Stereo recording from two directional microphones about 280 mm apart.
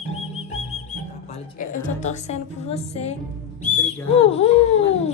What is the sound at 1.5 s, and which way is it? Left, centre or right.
A woman's voice, left.